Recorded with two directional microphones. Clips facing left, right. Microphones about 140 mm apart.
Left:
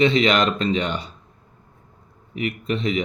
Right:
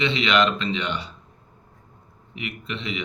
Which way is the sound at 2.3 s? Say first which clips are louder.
Left 8 dB; 45° left (ahead or behind).